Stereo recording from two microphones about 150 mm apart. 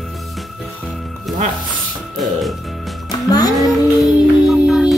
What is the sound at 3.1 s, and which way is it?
Music, 25° left (ahead or behind).